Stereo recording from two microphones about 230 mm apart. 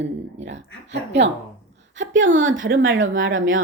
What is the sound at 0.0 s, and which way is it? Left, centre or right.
A woman's voice, right.